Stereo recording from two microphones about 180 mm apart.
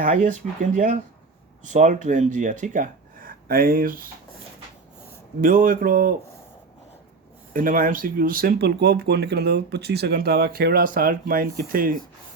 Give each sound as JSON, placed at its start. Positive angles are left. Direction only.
{"t": 0.0, "sound": "speech", "side_deg": -45}
{"t": 5.4, "sound": "speech", "side_deg": -50}
{"t": 7.5, "sound": "speech", "side_deg": -50}